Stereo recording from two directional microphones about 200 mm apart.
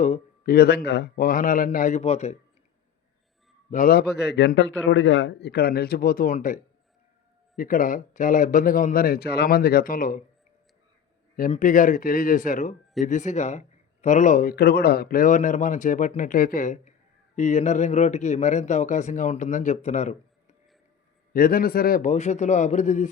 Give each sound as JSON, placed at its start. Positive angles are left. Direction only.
{"t": 0.0, "sound": "a sound", "side_deg": 35}
{"t": 0.5, "sound": "a man's voice", "side_deg": 50}
{"t": 3.7, "sound": "a man's voice", "side_deg": 45}
{"t": 11.3, "sound": "speech", "side_deg": 40}
{"t": 21.3, "sound": "speech", "side_deg": 45}